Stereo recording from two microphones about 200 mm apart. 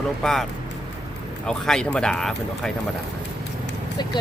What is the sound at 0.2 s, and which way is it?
Speech, centre (ahead or behind).